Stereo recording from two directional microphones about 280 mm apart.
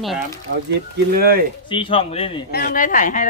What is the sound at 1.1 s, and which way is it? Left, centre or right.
Speech, right.